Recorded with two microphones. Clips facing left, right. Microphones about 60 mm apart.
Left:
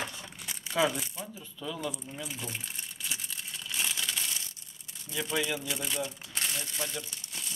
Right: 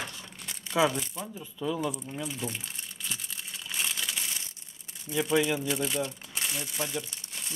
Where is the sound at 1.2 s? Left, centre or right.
Centre.